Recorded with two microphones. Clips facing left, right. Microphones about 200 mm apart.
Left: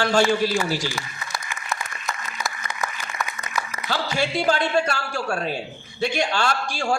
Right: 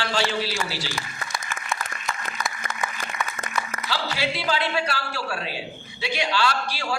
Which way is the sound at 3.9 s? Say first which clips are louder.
Left 4 dB; 50° left (ahead or behind).